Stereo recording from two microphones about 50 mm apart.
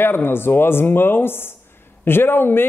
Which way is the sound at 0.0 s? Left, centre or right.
Left.